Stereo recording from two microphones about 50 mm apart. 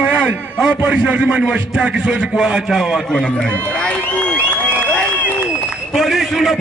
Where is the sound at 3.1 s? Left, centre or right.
Centre.